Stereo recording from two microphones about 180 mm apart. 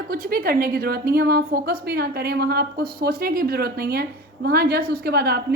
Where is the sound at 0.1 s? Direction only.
50° right (ahead or behind).